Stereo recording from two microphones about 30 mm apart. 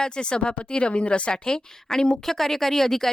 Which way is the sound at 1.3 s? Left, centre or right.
Left.